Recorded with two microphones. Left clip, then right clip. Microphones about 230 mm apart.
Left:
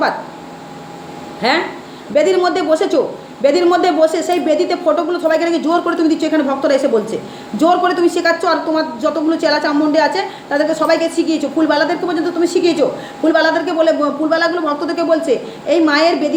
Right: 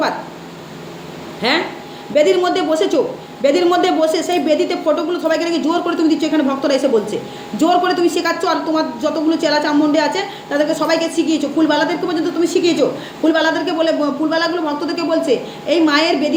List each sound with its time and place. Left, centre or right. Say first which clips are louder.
1.4 s a woman's voice: left 2 dB; centre